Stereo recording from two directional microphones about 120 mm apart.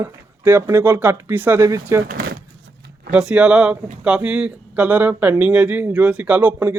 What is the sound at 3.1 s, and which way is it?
Speech, 5° right (ahead or behind).